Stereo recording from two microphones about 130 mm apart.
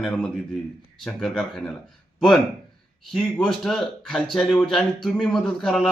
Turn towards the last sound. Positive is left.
turn(degrees=0)  # may be behind; listen again after turning